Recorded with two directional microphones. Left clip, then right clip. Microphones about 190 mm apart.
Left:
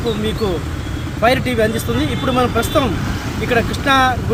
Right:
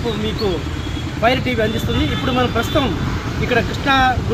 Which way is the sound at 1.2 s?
20° left (ahead or behind).